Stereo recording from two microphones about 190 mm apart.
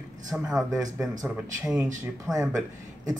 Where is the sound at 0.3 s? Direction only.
Centre (ahead or behind).